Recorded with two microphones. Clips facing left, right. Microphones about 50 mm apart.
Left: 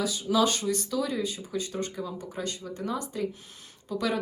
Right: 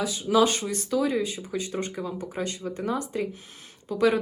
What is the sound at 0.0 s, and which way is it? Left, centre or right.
Speech, right.